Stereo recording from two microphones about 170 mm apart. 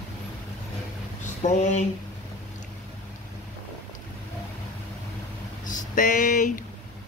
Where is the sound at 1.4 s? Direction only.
45° left (ahead or behind).